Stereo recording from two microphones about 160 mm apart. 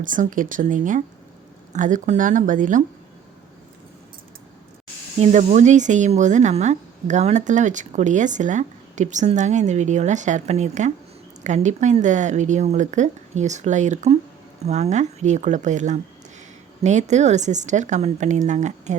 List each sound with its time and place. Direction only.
0.0 s speech: 55° right (ahead or behind)
5.2 s speech: 45° right (ahead or behind)